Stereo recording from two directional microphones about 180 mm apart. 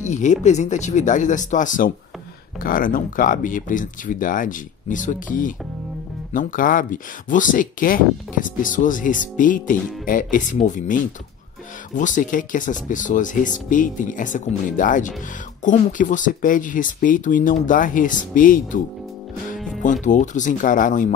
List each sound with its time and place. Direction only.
0.0 s speech: 40° left (ahead or behind)
19.8 s speech: 45° left (ahead or behind)